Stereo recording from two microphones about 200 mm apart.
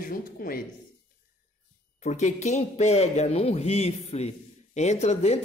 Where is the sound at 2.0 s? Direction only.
35° left (ahead or behind).